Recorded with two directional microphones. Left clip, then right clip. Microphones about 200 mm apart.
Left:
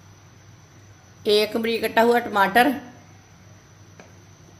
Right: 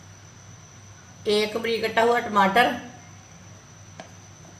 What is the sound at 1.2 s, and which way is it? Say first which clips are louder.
A woman's voice: left 3 dB; 55° left (ahead or behind).